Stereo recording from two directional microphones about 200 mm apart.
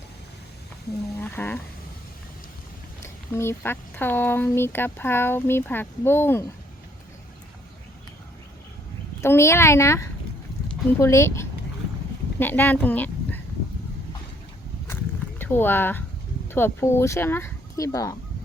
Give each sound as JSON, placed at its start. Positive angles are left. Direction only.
{"t": 1.2, "sound": "speech", "side_deg": 10}
{"t": 3.0, "sound": "speech", "side_deg": 10}
{"t": 9.2, "sound": "speech", "side_deg": 15}
{"t": 15.4, "sound": "speech", "side_deg": 10}